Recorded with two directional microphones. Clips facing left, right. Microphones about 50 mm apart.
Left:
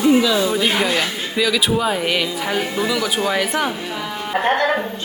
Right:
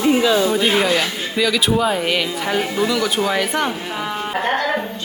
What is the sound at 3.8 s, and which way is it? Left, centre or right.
Music, centre.